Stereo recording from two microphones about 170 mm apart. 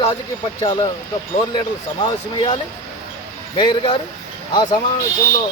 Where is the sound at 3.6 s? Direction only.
30° left (ahead or behind).